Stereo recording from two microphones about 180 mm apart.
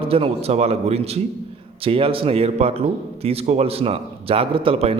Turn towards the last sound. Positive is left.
turn(degrees=-35)  # may be behind; listen again after turning